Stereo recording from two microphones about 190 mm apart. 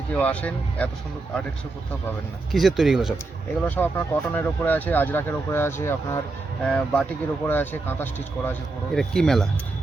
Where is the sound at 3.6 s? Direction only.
10° left (ahead or behind).